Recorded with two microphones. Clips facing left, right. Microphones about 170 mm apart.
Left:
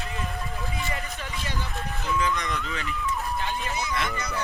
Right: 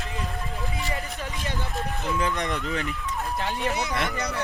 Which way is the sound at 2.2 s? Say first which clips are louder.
Even; 55° right (ahead or behind).